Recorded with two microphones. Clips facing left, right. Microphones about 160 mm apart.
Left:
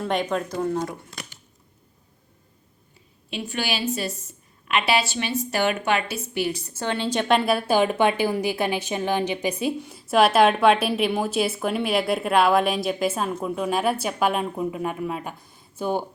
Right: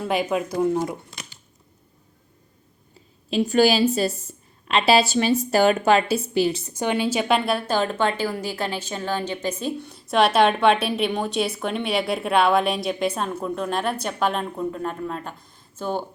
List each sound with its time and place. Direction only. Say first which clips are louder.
0.0 s speech: right 1 dB; 5° right (ahead or behind)
3.2 s a woman's voice: right 11 dB; 40° right (ahead or behind); by 16.0 s 10° left (ahead or behind)